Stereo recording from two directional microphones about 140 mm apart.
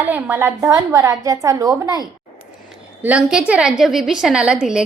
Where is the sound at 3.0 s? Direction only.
10° right (ahead or behind).